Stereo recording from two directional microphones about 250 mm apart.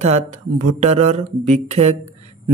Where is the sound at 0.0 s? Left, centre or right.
Right.